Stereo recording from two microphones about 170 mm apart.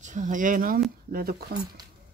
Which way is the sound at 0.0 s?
45° right (ahead or behind).